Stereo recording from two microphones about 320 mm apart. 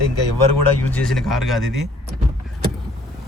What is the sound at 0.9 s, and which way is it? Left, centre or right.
Speech, centre.